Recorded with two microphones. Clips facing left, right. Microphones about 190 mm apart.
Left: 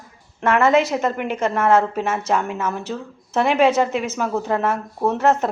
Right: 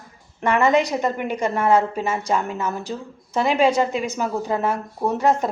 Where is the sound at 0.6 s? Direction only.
5° left (ahead or behind).